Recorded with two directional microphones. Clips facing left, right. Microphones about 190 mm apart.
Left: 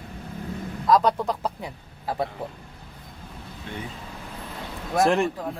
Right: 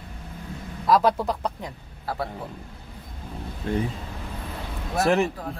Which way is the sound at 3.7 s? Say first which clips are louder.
Right 10 dB; 45° right (ahead or behind).